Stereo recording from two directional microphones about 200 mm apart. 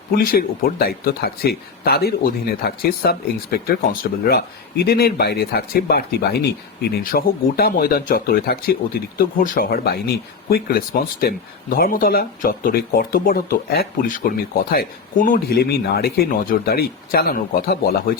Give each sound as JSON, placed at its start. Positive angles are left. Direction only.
{"t": 0.1, "sound": "speech", "side_deg": 45}